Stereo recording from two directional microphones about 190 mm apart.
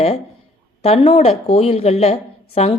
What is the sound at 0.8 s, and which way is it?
Speech, 30° left (ahead or behind).